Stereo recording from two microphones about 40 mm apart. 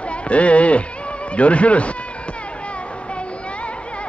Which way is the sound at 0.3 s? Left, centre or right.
Left.